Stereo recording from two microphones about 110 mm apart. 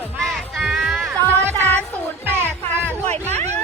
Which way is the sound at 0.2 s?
Centre (ahead or behind).